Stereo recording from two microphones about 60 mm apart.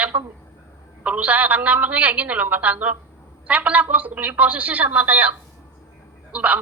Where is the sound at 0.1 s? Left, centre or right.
Right.